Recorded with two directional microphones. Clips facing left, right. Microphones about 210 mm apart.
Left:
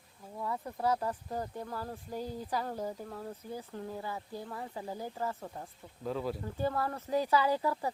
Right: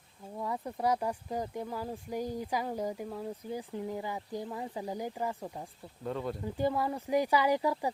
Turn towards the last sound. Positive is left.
turn(degrees=-15)  # may be behind; listen again after turning